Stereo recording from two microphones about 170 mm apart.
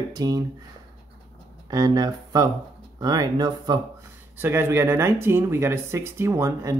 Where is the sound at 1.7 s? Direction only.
20° right (ahead or behind).